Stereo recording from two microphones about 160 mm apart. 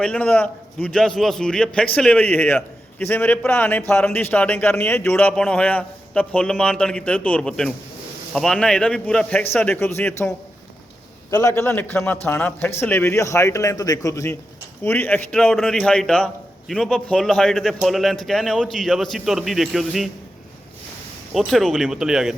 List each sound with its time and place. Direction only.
0.0 s a man's voice: 5° left (ahead or behind)
11.3 s a man's voice: 20° left (ahead or behind); by 20.1 s centre (ahead or behind)
21.3 s a man's voice: centre (ahead or behind)